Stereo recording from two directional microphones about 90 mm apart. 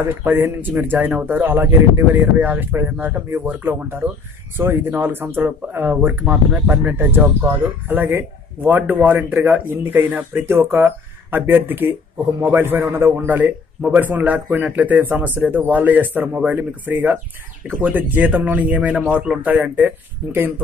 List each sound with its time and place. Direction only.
0.0 s a man's voice: 25° right (ahead or behind)